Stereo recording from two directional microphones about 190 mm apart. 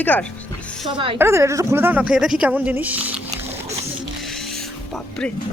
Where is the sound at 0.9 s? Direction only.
25° right (ahead or behind).